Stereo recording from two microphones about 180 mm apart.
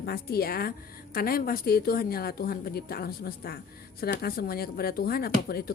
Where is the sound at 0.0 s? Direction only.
60° left (ahead or behind).